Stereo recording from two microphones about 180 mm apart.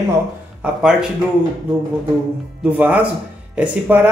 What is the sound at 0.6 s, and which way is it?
Speech, 5° right (ahead or behind).